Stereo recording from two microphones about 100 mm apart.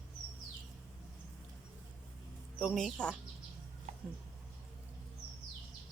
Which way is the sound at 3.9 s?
90° right.